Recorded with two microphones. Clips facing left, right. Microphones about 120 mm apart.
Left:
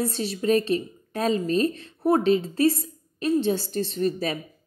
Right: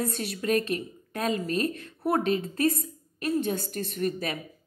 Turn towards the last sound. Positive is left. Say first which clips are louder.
# left 4 dB
turn(degrees=30)  # may be behind; listen again after turning